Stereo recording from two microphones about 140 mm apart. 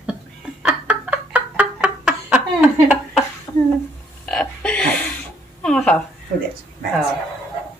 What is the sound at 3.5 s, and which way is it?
Stir, 25° left (ahead or behind).